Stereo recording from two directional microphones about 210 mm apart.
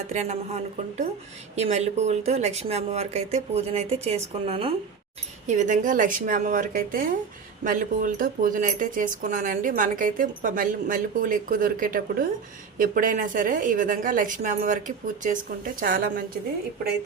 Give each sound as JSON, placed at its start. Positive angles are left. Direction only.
{"t": 0.1, "sound": "speech", "side_deg": -30}
{"t": 1.5, "sound": "speech", "side_deg": -30}